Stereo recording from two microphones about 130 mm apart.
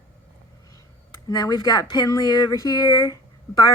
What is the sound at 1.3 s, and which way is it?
Speech, 30° left (ahead or behind).